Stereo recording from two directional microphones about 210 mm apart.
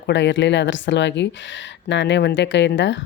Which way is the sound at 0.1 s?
55° left (ahead or behind).